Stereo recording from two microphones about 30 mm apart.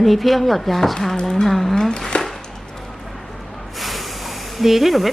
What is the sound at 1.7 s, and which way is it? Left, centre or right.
Speech, left.